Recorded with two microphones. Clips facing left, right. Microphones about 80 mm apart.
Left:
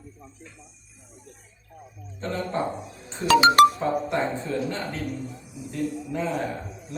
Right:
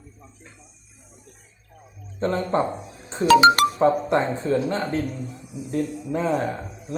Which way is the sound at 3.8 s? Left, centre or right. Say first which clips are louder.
Right 6 dB; right.